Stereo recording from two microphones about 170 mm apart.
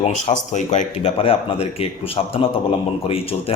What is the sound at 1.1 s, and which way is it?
A man's voice, 35° left (ahead or behind).